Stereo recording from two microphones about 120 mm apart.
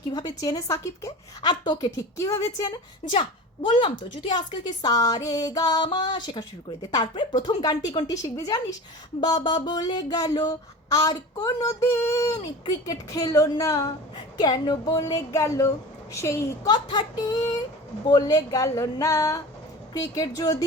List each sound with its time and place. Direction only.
0.1 s a woman's voice: 35° left (ahead or behind)
2.1 s speech: 25° left (ahead or behind)
3.6 s a woman's voice: 40° left (ahead or behind); by 16.5 s 25° left (ahead or behind)
16.6 s a woman's voice: 40° left (ahead or behind)